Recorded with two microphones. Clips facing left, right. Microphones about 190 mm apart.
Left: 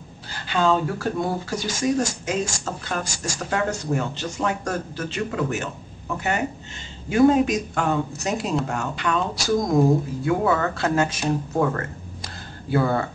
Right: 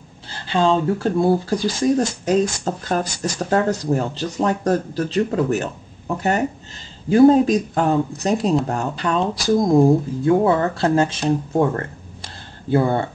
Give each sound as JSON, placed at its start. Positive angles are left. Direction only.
{"t": 0.3, "sound": "speech", "side_deg": -30}